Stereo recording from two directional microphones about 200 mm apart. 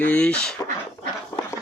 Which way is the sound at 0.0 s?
5° left (ahead or behind).